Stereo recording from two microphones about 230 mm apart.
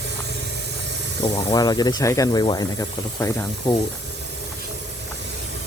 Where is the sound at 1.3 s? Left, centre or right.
Centre.